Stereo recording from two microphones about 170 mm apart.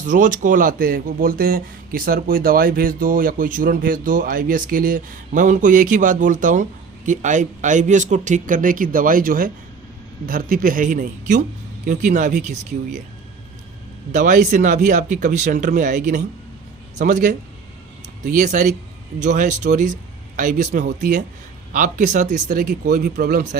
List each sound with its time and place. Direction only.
0.0 s speech: 50° right (ahead or behind)
14.1 s speech: 45° right (ahead or behind)
22.6 s a man's voice: 70° right (ahead or behind)